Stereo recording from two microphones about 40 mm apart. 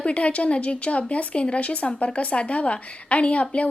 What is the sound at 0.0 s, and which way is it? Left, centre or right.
Speech, left.